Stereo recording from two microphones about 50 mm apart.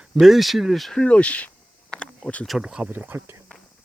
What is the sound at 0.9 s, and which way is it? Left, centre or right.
Speech, left.